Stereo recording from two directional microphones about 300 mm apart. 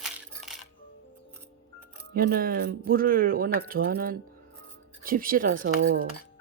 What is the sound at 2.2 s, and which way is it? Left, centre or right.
Speech, right.